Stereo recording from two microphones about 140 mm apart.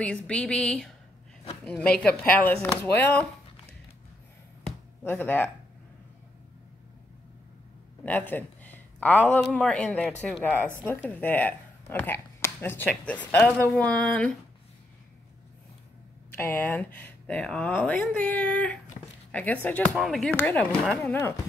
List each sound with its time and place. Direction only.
0.0 s speech: 5° left (ahead or behind)
5.0 s speech: 15° left (ahead or behind)
8.0 s speech: 10° left (ahead or behind)
16.3 s speech: 15° left (ahead or behind)
20.3 s speech: 15° left (ahead or behind)